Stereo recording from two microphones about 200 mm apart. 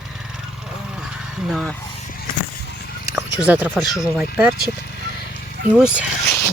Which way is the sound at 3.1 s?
10° right (ahead or behind).